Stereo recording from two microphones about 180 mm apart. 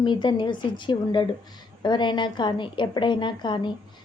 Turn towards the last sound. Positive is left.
turn(degrees=25)  # may be behind; listen again after turning